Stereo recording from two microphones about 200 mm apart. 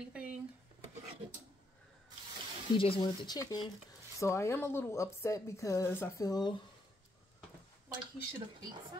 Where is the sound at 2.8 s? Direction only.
25° left (ahead or behind).